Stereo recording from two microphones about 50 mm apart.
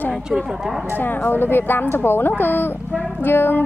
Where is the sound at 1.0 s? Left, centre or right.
Left.